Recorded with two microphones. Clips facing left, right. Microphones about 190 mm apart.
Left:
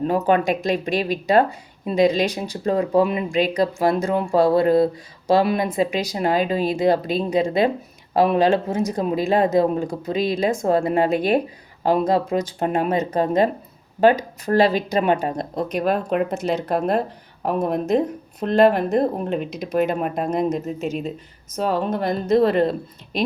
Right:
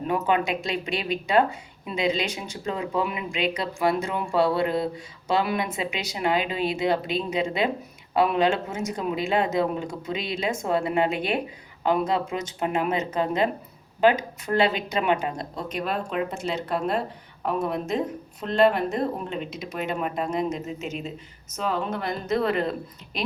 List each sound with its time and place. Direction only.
0.1 s speech: 45° left (ahead or behind)